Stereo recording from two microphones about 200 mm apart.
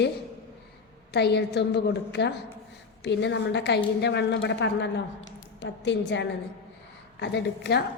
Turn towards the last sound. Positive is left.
turn(degrees=55)  # may be behind; listen again after turning